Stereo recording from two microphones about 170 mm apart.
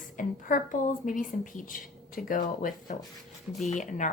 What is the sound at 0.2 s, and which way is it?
A woman's voice, 50° left (ahead or behind).